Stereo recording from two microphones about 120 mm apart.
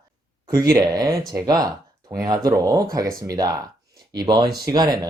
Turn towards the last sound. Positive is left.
turn(degrees=-35)  # may be behind; listen again after turning